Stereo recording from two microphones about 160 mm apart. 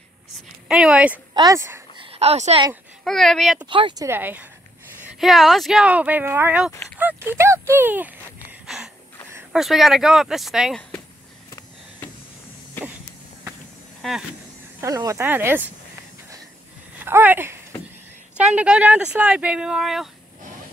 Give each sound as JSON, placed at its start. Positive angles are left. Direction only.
{"t": 0.7, "sound": "speech", "side_deg": -5}
{"t": 1.3, "sound": "speech", "side_deg": -25}
{"t": 2.0, "sound": "a woman's voice", "side_deg": -40}
{"t": 3.0, "sound": "speech", "side_deg": 0}
{"t": 3.6, "sound": "speech", "side_deg": -30}
{"t": 4.0, "sound": "speech", "side_deg": -15}
{"t": 5.0, "sound": "speech", "side_deg": 0}
{"t": 7.0, "sound": "a sound", "side_deg": -10}
{"t": 9.5, "sound": "speech", "side_deg": 0}
{"t": 14.8, "sound": "speech", "side_deg": -20}
{"t": 17.0, "sound": "speech", "side_deg": -10}